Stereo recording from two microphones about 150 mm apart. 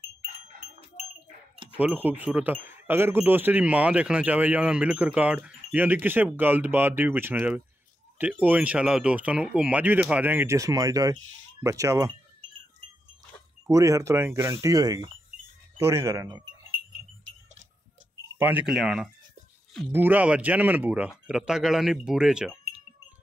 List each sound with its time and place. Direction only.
1.8 s speech: 10° right (ahead or behind)
13.7 s speech: 20° right (ahead or behind)
18.4 s speech: 10° right (ahead or behind)